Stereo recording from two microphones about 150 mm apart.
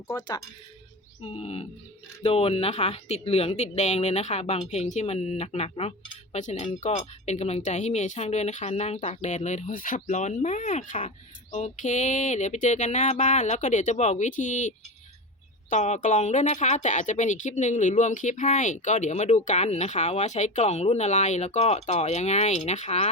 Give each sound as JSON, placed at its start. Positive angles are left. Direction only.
{"t": 0.1, "sound": "speech", "side_deg": 25}
{"t": 1.2, "sound": "a sound", "side_deg": 40}
{"t": 2.2, "sound": "speech", "side_deg": 40}
{"t": 15.7, "sound": "speech", "side_deg": 55}